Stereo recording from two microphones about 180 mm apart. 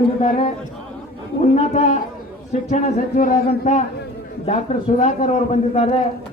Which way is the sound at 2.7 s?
50° left (ahead or behind).